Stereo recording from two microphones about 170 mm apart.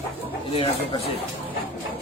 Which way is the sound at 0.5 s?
35° left (ahead or behind).